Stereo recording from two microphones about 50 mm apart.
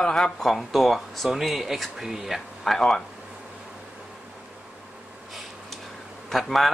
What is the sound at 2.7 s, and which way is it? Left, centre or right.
Speech, centre.